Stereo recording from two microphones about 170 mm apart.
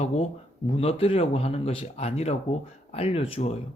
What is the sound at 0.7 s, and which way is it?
Speech, 35° left (ahead or behind).